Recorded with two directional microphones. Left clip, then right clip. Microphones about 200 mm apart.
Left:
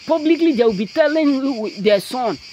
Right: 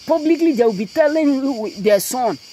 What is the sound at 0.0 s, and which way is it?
Speech, 10° right (ahead or behind).